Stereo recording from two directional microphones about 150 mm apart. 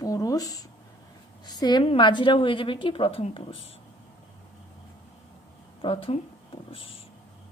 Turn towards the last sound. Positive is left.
turn(degrees=40)  # may be behind; listen again after turning